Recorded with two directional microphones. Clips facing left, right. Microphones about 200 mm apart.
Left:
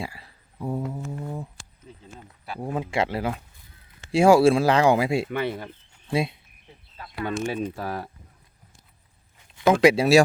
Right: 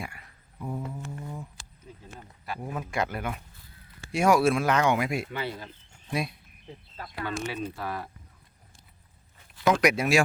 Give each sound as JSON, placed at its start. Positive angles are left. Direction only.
{"t": 0.0, "sound": "a sound", "side_deg": 30}
{"t": 0.9, "sound": "speech", "side_deg": 40}
{"t": 2.6, "sound": "speech", "side_deg": 30}
{"t": 5.3, "sound": "speech", "side_deg": 60}
{"t": 6.1, "sound": "speech", "side_deg": 25}
{"t": 7.5, "sound": "speech", "side_deg": 45}
{"t": 9.5, "sound": "speech", "side_deg": 30}